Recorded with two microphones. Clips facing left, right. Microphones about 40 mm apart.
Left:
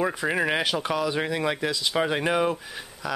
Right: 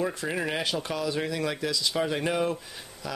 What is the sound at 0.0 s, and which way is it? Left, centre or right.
Speech, left.